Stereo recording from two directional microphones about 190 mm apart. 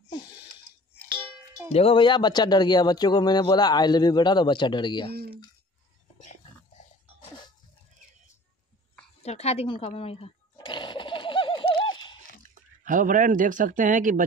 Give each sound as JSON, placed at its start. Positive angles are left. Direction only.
{"t": 1.7, "sound": "speech", "side_deg": 30}
{"t": 9.2, "sound": "a sound", "side_deg": 35}
{"t": 12.4, "sound": "speech", "side_deg": -45}